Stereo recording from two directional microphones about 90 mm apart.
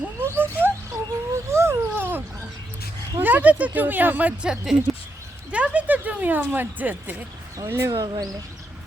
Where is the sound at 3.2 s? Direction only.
20° right (ahead or behind).